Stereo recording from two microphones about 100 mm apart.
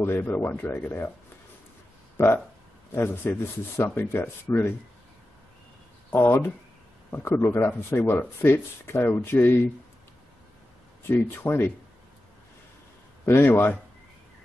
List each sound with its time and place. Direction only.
0.0 s speech: 20° left (ahead or behind)
2.2 s speech: 30° left (ahead or behind)
6.0 s a sound: 20° left (ahead or behind)
7.1 s speech: 20° left (ahead or behind)
11.1 s speech: 25° left (ahead or behind)
13.2 s speech: 20° left (ahead or behind)